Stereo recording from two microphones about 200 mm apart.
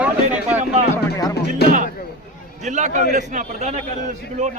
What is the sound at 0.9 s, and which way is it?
Music, 15° left (ahead or behind).